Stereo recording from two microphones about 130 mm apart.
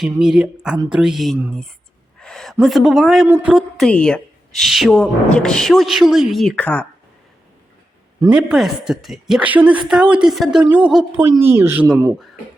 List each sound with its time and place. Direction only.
0.2 s a woman's voice: 5° right (ahead or behind)
3.4 s a sound: 5° right (ahead or behind)
3.8 s a woman's voice: 5° left (ahead or behind)
6.6 s speech: 10° left (ahead or behind)
8.3 s a woman's voice: 5° right (ahead or behind)